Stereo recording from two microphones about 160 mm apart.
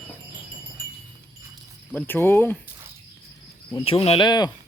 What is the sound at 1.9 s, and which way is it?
Speech, 15° left (ahead or behind).